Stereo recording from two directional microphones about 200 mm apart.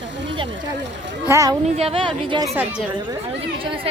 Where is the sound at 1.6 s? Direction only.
30° right (ahead or behind).